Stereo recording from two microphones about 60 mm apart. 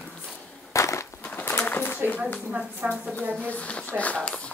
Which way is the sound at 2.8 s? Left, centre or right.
Right.